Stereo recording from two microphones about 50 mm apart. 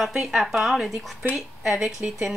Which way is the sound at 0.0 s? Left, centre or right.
Centre.